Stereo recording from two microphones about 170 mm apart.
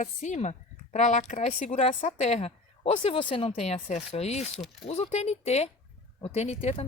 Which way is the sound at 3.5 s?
45° left (ahead or behind).